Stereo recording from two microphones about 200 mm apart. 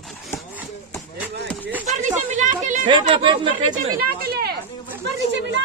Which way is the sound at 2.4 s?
40° right (ahead or behind).